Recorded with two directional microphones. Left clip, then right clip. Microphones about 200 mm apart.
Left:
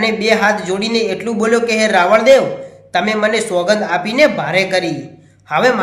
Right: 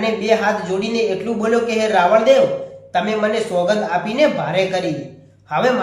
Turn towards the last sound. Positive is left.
turn(degrees=45)  # may be behind; listen again after turning